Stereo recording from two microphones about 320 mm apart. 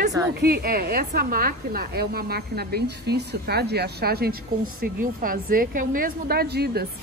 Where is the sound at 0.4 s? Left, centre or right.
Right.